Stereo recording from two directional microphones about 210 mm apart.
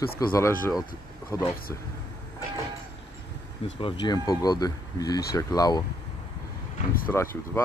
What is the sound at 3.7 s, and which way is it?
Speech, 25° left (ahead or behind).